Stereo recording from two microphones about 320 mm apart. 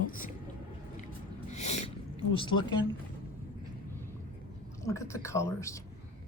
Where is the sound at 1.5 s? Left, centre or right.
Left.